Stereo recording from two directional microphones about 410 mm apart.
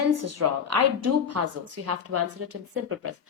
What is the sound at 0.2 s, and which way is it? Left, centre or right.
A woman's voice, right.